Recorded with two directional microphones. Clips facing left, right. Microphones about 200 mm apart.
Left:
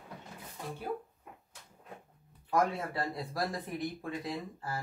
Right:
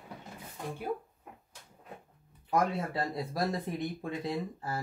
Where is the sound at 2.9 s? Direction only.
25° right (ahead or behind).